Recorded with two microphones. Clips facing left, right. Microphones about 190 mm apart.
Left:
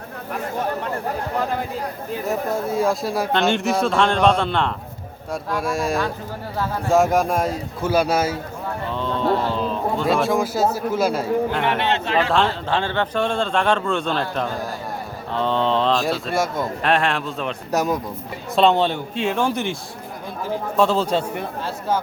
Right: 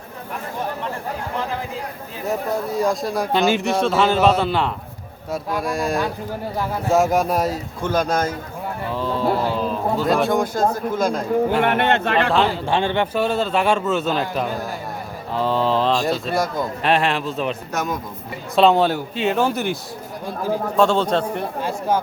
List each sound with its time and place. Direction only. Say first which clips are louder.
2.2 s speech: right 1 dB; centre (ahead or behind)
8.9 s speech: even; 5° right (ahead or behind)
11.6 s speech: right 3 dB; 55° right (ahead or behind)
12.3 s a man's voice: right 1 dB; 10° right (ahead or behind)
13.1 s speech: right 1 dB; 5° right (ahead or behind)
17.7 s speech: left 4 dB; 35° left (ahead or behind)
18.5 s speech: right 2 dB; centre (ahead or behind)
20.7 s speech: right 1 dB; centre (ahead or behind)
21.6 s a man's voice: right 2 dB; 15° right (ahead or behind)